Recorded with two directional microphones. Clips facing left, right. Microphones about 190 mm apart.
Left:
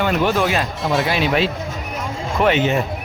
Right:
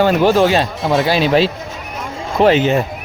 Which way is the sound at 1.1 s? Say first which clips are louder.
Right 5 dB; 35° right (ahead or behind).